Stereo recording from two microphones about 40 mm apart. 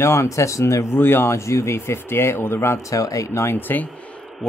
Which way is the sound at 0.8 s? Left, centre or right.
Left.